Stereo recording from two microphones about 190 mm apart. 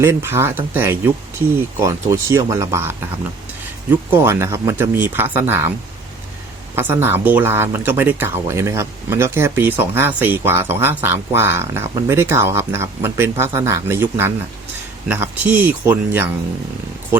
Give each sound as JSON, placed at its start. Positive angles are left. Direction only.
{"t": 0.0, "sound": "speech", "side_deg": -15}
{"t": 4.1, "sound": "speech", "side_deg": -10}
{"t": 6.7, "sound": "speech", "side_deg": -10}